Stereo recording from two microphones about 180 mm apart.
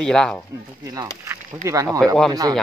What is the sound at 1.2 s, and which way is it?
Speech, 20° right (ahead or behind).